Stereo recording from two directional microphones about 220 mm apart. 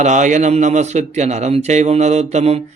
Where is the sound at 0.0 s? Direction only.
35° right (ahead or behind).